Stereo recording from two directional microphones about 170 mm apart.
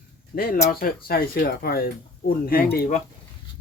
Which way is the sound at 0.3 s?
60° left (ahead or behind).